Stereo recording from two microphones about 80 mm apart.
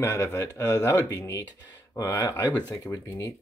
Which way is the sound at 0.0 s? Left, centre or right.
Left.